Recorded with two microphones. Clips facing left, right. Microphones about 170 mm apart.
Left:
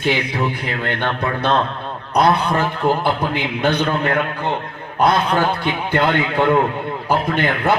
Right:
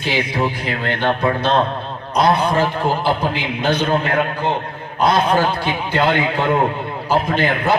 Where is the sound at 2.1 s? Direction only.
55° left (ahead or behind).